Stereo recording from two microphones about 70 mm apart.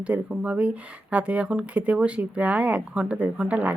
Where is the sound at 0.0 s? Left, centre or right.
Centre.